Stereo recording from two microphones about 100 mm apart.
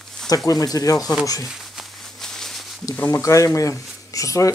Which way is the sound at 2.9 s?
25° left (ahead or behind).